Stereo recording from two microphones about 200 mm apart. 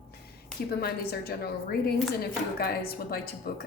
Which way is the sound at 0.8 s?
50° left (ahead or behind).